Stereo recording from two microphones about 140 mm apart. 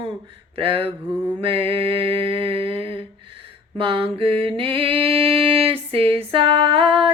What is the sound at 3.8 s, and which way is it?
Mantra, 40° right (ahead or behind).